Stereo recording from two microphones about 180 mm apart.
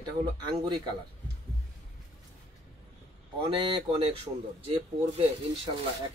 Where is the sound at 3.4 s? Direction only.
30° right (ahead or behind).